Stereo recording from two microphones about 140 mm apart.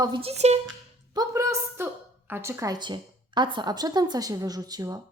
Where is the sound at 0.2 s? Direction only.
50° right (ahead or behind).